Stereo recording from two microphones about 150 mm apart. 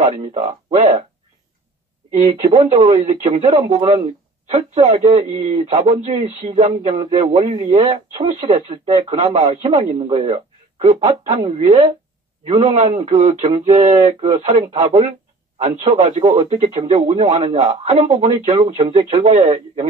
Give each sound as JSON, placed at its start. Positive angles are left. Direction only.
{"t": 0.0, "sound": "speech", "side_deg": -45}
{"t": 2.1, "sound": "speech", "side_deg": -50}